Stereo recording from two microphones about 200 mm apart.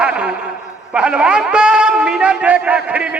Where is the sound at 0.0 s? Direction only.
5° right (ahead or behind).